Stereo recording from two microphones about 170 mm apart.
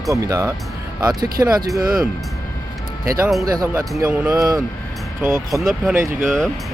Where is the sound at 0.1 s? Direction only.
20° right (ahead or behind).